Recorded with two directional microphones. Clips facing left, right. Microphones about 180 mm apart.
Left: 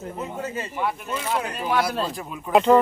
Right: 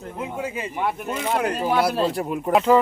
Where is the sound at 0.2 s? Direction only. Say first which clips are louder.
Right 3 dB; 10° right (ahead or behind).